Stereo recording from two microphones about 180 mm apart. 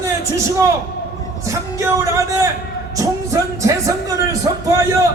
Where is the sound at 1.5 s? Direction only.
15° right (ahead or behind).